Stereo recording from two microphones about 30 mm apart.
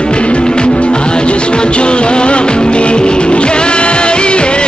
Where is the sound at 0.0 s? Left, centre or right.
Left.